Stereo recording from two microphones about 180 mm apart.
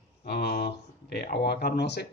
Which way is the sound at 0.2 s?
60° left (ahead or behind).